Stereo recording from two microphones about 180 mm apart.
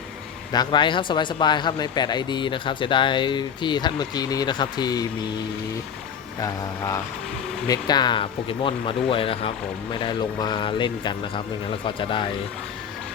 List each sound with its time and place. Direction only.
0.5 s speech: 25° left (ahead or behind)
6.4 s speech: 15° left (ahead or behind)